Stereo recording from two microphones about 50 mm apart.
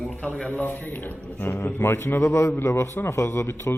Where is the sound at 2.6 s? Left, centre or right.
Left.